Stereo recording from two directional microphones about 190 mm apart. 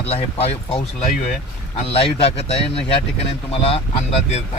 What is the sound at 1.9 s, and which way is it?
Speech, 30° left (ahead or behind).